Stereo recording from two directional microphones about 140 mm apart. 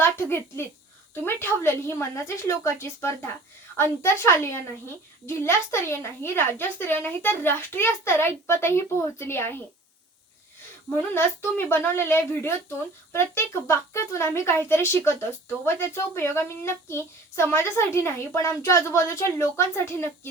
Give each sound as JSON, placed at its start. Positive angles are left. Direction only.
{"t": 0.0, "sound": "a woman's voice", "side_deg": 15}
{"t": 10.8, "sound": "a child's voice", "side_deg": 15}